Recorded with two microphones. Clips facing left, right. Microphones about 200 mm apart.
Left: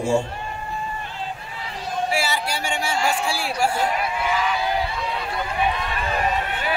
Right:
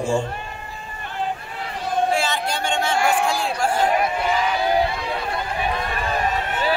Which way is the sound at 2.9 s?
55° right (ahead or behind).